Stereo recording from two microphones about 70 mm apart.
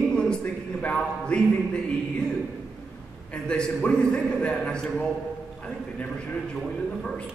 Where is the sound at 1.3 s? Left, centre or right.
Centre.